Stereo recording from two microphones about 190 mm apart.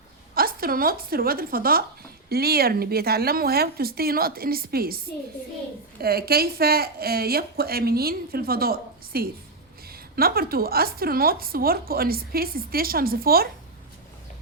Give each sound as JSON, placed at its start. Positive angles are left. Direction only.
{"t": 0.3, "sound": "a woman's voice", "side_deg": -50}